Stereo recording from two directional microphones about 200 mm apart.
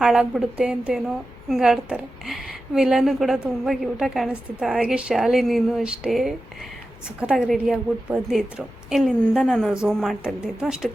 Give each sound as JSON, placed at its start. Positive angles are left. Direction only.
{"t": 0.0, "sound": "a woman's voice", "side_deg": -5}